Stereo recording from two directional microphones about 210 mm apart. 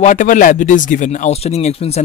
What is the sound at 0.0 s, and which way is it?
Speech, 35° left (ahead or behind).